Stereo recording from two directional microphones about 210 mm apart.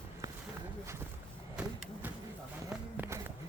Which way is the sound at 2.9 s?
10° right (ahead or behind).